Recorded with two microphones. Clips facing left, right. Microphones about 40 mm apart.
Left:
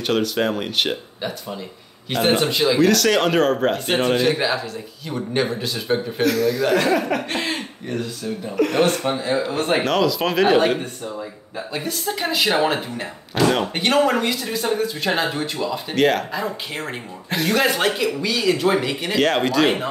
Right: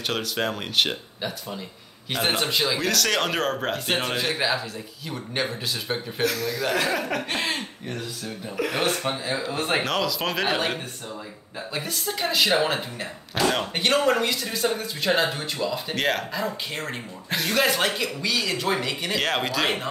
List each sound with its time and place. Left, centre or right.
0.0 s speech: centre